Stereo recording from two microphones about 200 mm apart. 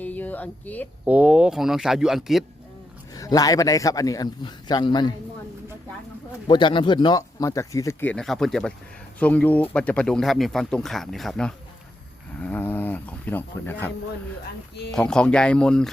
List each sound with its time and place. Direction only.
0.0 s a sound: 10° left (ahead or behind)
1.0 s speech: 5° right (ahead or behind)
3.2 s speech: 20° left (ahead or behind)
6.5 s speech: 25° left (ahead or behind)
14.9 s speech: 5° left (ahead or behind)